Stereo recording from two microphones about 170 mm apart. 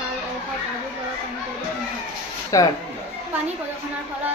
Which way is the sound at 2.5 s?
20° left (ahead or behind).